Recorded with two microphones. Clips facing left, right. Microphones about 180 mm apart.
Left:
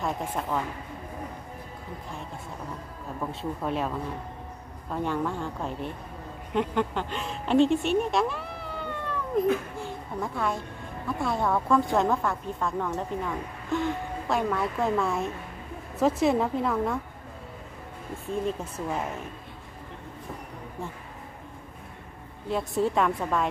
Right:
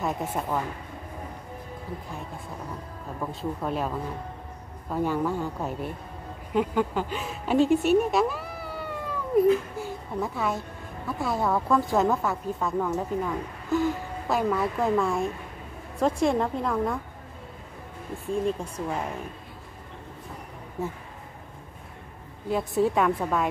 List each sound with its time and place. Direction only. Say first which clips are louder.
0.0 s speech: right 1 dB; 5° right (ahead or behind)
3.3 s a woman's voice: right 1 dB; centre (ahead or behind)
4.9 s a woman's voice: right 3 dB; 5° right (ahead or behind)
18.2 s a woman's voice: right 3 dB; centre (ahead or behind)
22.5 s a woman's voice: right 2 dB; centre (ahead or behind)